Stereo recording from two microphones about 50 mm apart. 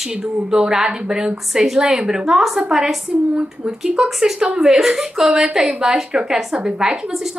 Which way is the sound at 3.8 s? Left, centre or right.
Centre.